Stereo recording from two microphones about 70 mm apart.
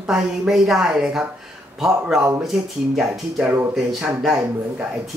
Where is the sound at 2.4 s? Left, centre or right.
Centre.